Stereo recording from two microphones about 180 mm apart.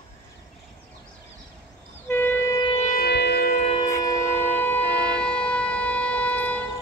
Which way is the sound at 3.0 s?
70° left (ahead or behind).